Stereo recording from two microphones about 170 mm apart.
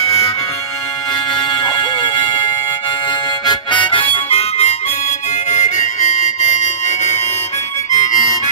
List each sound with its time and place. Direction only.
0.0 s music: 35° left (ahead or behind)
1.5 s music: 30° left (ahead or behind)
3.4 s harmonica: 25° left (ahead or behind); by 8.4 s 45° left (ahead or behind)